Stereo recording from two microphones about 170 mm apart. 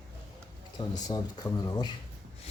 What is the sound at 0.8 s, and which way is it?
Speech, 25° left (ahead or behind).